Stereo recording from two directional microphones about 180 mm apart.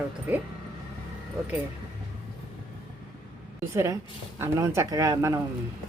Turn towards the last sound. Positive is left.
turn(degrees=-15)  # may be behind; listen again after turning